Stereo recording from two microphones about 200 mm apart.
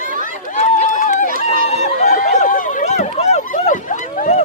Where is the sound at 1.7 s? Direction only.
35° left (ahead or behind).